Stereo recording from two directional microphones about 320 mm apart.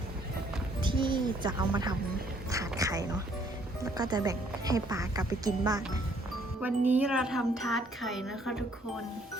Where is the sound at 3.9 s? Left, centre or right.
Centre.